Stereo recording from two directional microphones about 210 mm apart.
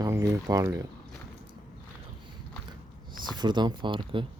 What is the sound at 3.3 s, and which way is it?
Speech, 20° right (ahead or behind).